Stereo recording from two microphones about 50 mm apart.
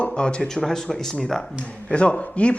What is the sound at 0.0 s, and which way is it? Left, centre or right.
Speech, centre.